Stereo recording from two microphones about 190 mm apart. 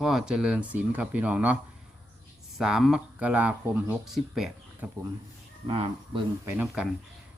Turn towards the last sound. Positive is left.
turn(degrees=-10)  # may be behind; listen again after turning